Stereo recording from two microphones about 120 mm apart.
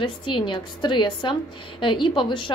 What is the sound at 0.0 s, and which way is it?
A woman's voice, 40° left (ahead or behind).